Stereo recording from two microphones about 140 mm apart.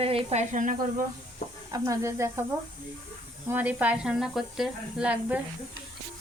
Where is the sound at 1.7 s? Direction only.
20° right (ahead or behind).